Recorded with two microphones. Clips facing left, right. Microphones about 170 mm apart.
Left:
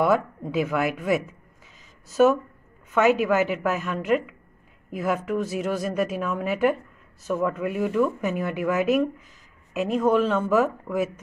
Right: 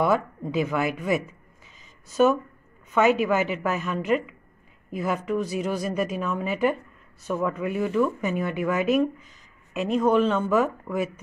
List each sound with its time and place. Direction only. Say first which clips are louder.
0.0 s a woman's voice: left 1 dB; centre (ahead or behind)